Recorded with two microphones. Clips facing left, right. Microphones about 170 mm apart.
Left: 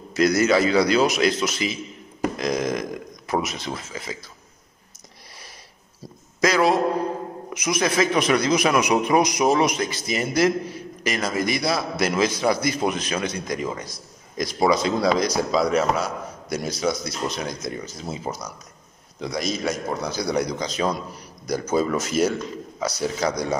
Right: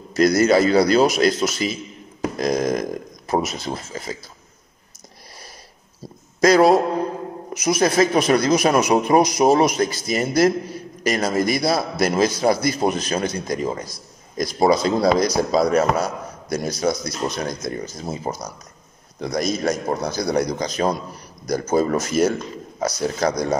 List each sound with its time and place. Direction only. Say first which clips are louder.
0.1 s a man's voice: right 3 dB; 40° right (ahead or behind)
6.4 s a man's voice: right 5 dB; 40° right (ahead or behind)